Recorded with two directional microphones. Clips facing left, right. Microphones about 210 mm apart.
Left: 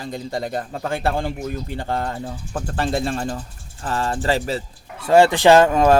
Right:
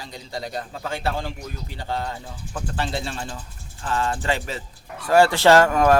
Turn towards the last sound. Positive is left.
turn(degrees=25)  # may be behind; listen again after turning